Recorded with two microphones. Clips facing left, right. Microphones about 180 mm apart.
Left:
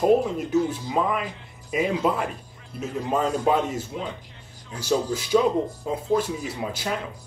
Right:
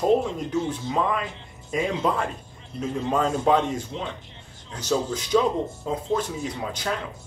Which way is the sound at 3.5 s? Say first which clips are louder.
Right 1 dB; 5° left (ahead or behind).